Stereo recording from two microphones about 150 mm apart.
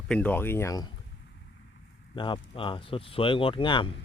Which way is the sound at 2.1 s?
35° left (ahead or behind).